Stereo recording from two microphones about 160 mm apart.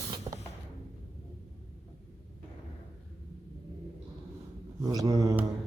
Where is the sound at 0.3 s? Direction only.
30° right (ahead or behind).